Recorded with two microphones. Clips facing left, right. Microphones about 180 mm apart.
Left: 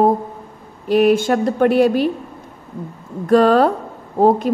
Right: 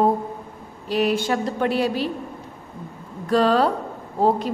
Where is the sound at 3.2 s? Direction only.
50° left (ahead or behind).